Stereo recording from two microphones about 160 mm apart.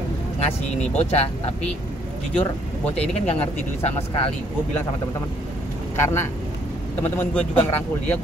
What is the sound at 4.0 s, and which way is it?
Speech, 40° left (ahead or behind).